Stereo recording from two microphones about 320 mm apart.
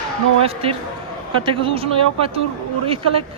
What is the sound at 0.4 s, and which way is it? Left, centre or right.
Speech, centre.